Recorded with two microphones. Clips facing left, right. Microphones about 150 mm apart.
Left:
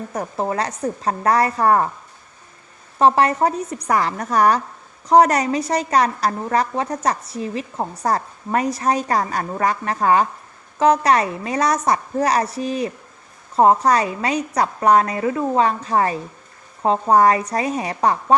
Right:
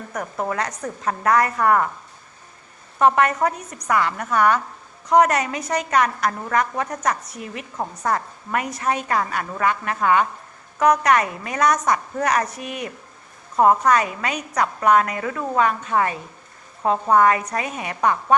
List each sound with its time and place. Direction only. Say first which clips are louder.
0.1 s a woman's voice: left 2 dB; 30° left (ahead or behind)
3.0 s a woman's voice: left 2 dB; 30° left (ahead or behind)